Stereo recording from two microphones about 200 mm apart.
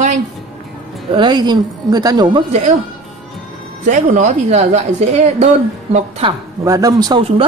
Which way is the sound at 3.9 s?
40° right (ahead or behind).